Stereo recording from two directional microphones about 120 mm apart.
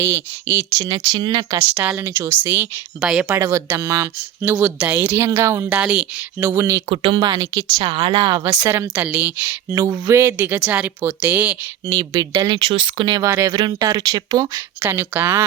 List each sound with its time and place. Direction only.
0.0 s speech: 20° right (ahead or behind)
0.9 s speech: 40° right (ahead or behind)
1.5 s speech: 15° right (ahead or behind)
3.0 s speech: 5° right (ahead or behind)
3.3 s speech: 25° right (ahead or behind)
5.8 s speech: 10° right (ahead or behind)
6.4 s speech: 25° right (ahead or behind)
6.8 s speech: 45° right (ahead or behind); by 9.7 s 15° right (ahead or behind)
9.7 s speech: 25° right (ahead or behind)
12.1 s speech: 35° right (ahead or behind)
14.8 s speech: 15° right (ahead or behind)